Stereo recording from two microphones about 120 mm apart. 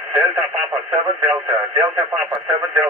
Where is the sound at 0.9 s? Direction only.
15° right (ahead or behind).